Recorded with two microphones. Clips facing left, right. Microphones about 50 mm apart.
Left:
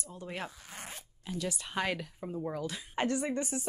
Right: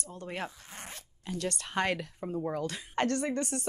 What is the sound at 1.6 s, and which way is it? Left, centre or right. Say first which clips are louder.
Speech: right 4 dB; right.